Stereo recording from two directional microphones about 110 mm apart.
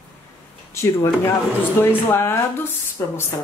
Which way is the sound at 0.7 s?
20° left (ahead or behind).